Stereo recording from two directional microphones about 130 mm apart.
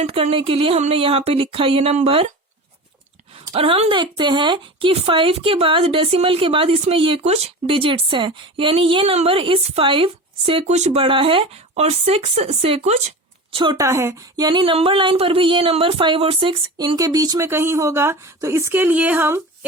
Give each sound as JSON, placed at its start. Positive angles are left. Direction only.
{"t": 0.0, "sound": "speech", "side_deg": -50}
{"t": 3.5, "sound": "speech", "side_deg": -45}
{"t": 13.5, "sound": "a woman's voice", "side_deg": -40}
{"t": 13.7, "sound": "speech", "side_deg": -20}